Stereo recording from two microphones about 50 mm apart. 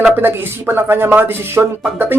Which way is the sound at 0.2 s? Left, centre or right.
Right.